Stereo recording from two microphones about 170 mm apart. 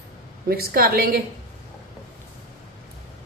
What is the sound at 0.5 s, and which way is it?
Speech, 65° right (ahead or behind).